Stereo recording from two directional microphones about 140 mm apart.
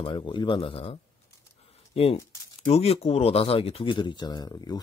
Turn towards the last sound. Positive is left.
turn(degrees=30)  # may be behind; listen again after turning